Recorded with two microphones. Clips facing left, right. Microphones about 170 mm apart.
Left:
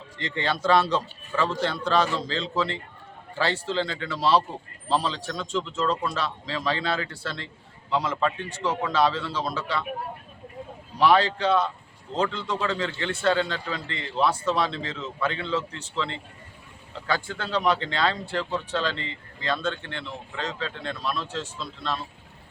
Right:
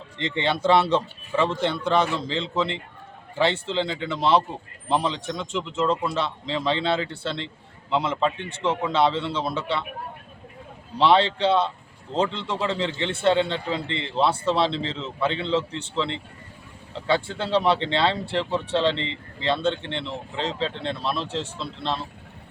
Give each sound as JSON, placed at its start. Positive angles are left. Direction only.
{"t": 0.2, "sound": "speech", "side_deg": -25}
{"t": 10.9, "sound": "speech", "side_deg": -25}